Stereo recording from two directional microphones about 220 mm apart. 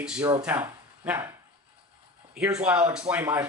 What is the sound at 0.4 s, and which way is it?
Speech, 5° right (ahead or behind).